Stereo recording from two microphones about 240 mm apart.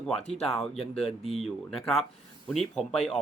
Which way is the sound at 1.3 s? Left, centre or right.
Centre.